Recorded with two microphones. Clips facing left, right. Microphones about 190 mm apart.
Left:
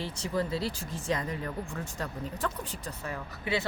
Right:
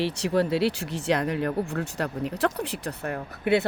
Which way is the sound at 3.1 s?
60° right (ahead or behind).